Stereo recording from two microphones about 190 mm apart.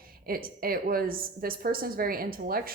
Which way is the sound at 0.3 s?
50° right (ahead or behind).